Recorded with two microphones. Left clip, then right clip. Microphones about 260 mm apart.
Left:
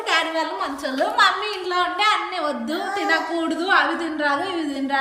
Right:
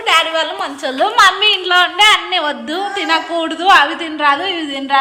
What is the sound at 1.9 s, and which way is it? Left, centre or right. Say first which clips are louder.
A woman's voice: right 9 dB; centre.